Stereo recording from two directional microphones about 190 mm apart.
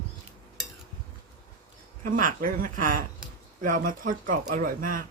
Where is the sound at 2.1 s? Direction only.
45° right (ahead or behind).